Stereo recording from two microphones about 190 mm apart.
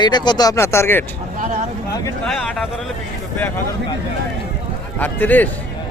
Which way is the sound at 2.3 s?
Centre (ahead or behind).